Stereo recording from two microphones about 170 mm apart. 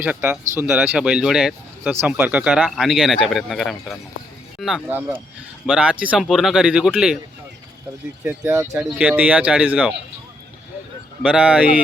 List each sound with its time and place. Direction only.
0.0 s speech: 10° right (ahead or behind)
4.9 s speech: 10° right (ahead or behind)
8.2 s speech: 10° right (ahead or behind)
11.2 s speech: 5° right (ahead or behind)